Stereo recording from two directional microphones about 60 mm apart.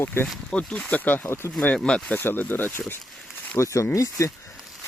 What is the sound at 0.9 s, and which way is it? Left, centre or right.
Speech, left.